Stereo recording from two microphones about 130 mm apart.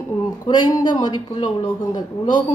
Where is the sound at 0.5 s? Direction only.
35° left (ahead or behind).